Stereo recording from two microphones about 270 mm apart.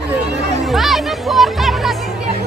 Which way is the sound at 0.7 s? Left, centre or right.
Centre.